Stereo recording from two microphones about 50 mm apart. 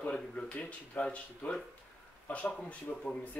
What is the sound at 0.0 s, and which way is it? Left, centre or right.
Speech, left.